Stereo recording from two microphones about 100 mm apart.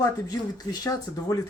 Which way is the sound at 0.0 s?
40° left (ahead or behind).